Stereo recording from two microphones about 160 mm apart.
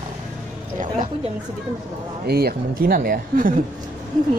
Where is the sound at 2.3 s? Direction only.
75° right (ahead or behind); by 3.6 s 60° right (ahead or behind).